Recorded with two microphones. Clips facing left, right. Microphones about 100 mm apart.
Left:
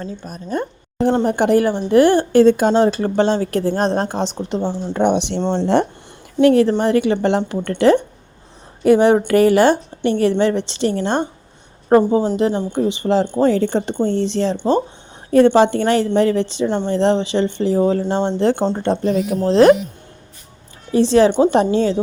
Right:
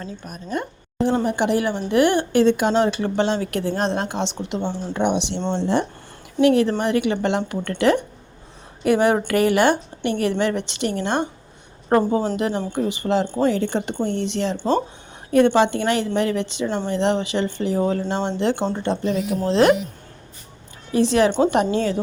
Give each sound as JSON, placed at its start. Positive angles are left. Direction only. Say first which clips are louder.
{"t": 0.0, "sound": "speech", "louder": "left 4 dB", "side_deg": 35}
{"t": 1.2, "sound": "a woman's voice", "louder": "left 5 dB", "side_deg": 45}
{"t": 5.4, "sound": "speech", "louder": "left 5 dB", "side_deg": 35}
{"t": 11.9, "sound": "a woman's voice", "louder": "left 5 dB", "side_deg": 20}
{"t": 20.9, "sound": "speech", "louder": "left 5 dB", "side_deg": 30}